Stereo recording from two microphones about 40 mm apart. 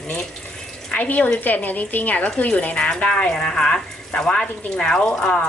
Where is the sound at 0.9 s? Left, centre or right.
Left; by 5.3 s centre.